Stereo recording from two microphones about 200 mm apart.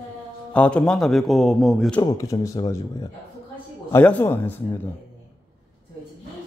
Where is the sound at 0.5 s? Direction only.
5° left (ahead or behind).